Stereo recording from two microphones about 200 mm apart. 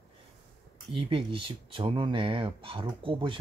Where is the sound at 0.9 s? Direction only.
25° right (ahead or behind).